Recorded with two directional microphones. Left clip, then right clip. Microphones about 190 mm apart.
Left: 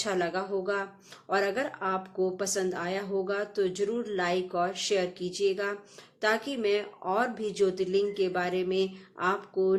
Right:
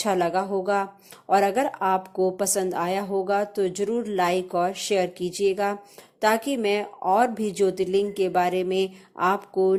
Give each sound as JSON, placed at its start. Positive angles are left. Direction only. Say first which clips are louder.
{"t": 0.0, "sound": "speech", "louder": "right 7 dB", "side_deg": -35}